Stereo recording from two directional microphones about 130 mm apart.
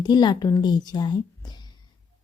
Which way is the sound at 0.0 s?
35° left (ahead or behind).